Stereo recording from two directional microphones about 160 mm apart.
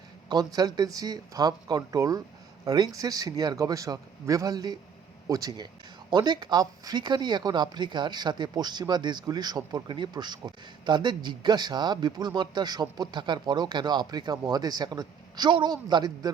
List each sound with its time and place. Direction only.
0.3 s speech: 25° right (ahead or behind)